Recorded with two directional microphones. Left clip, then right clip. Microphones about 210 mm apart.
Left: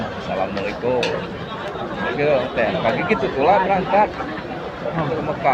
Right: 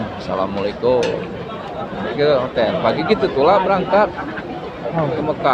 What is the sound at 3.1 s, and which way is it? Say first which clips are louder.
Speech: right 3 dB; 25° right (ahead or behind).